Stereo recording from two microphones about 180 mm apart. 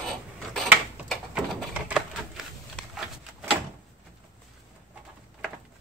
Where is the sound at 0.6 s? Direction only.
5° right (ahead or behind).